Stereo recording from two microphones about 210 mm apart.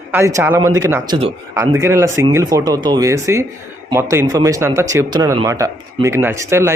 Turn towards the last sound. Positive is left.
turn(degrees=-15)  # may be behind; listen again after turning